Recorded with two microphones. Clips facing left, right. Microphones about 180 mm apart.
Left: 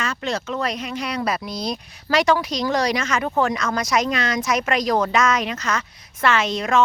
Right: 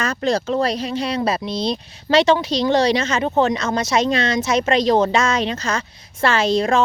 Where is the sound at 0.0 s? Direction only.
40° right (ahead or behind).